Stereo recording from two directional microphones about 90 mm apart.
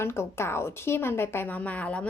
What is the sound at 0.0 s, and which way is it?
A woman's voice, 25° left (ahead or behind).